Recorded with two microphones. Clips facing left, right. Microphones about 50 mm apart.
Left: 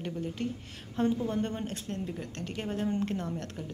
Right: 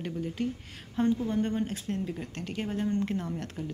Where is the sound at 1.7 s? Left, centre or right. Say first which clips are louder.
Right 3 dB; centre.